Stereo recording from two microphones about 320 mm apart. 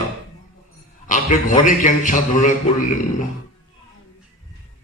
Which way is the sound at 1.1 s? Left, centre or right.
Left.